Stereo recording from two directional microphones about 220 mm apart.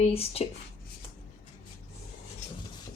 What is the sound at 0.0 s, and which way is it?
Speech, 25° left (ahead or behind).